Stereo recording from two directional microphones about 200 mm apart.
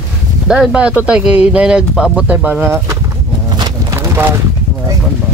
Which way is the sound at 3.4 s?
20° right (ahead or behind).